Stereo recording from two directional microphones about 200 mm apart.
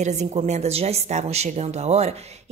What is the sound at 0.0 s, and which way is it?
A woman's voice, 35° right (ahead or behind).